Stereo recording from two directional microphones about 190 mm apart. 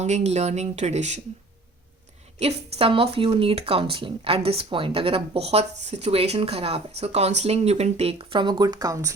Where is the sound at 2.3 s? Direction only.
35° right (ahead or behind).